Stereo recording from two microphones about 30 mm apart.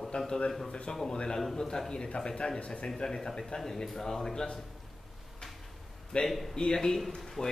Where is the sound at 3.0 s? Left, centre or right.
Centre.